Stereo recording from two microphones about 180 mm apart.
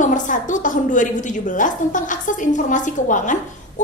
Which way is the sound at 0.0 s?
45° left (ahead or behind).